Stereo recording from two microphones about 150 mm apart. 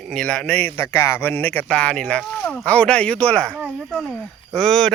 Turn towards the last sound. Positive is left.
turn(degrees=5)  # may be behind; listen again after turning